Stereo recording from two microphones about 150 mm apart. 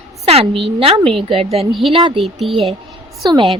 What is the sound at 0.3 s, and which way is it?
A woman's voice, 40° right (ahead or behind).